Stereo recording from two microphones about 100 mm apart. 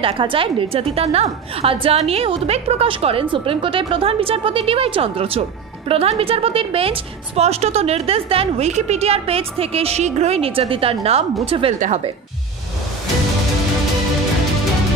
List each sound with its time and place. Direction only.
0.0 s a woman's voice: 60° right (ahead or behind); by 11.2 s 80° right
11.4 s a woman's voice: 65° right (ahead or behind)